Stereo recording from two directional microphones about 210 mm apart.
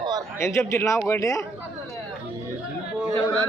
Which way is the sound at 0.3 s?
15° left (ahead or behind).